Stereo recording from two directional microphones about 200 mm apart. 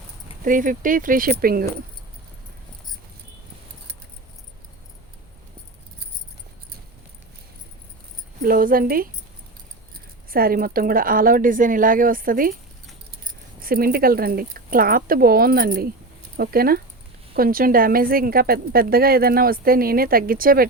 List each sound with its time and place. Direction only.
0.4 s a woman's voice: 40° right (ahead or behind)
8.4 s a woman's voice: 45° right (ahead or behind)
10.2 s a woman's voice: 45° right (ahead or behind)